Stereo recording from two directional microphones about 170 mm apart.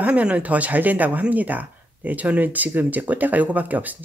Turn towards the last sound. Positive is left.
turn(degrees=-10)  # may be behind; listen again after turning